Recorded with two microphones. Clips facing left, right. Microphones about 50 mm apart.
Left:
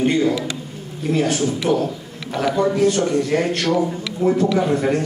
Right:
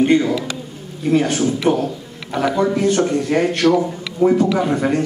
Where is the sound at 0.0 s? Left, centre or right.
Right.